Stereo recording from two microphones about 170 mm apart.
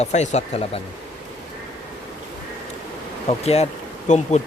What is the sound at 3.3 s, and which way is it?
Speech, 40° left (ahead or behind).